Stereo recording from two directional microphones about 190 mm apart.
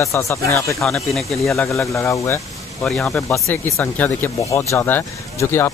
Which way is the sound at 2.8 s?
Centre (ahead or behind).